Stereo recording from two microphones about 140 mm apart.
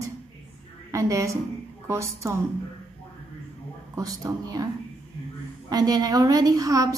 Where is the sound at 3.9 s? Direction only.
25° right (ahead or behind).